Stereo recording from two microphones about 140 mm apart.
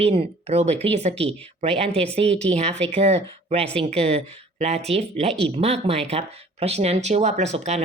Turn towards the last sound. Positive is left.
turn(degrees=-55)  # may be behind; listen again after turning